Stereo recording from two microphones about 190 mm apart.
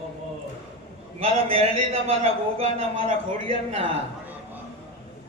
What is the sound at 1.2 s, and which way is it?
A man's voice, 30° right (ahead or behind).